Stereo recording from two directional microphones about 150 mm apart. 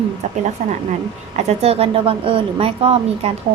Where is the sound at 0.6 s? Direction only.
55° right (ahead or behind).